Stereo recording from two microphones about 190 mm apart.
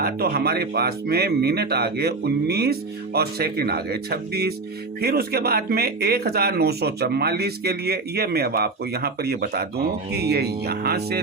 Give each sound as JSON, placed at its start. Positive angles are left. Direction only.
{"t": 0.0, "sound": "speech", "side_deg": -55}